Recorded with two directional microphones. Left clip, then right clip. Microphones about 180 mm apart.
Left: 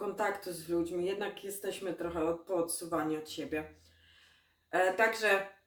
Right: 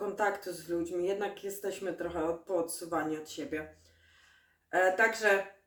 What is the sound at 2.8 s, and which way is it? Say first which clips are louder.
Speech: right 1 dB; 20° right (ahead or behind).